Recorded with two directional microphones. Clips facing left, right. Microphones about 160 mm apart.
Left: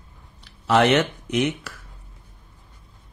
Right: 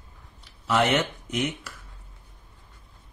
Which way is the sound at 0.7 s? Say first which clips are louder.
Left 5 dB; 80° left.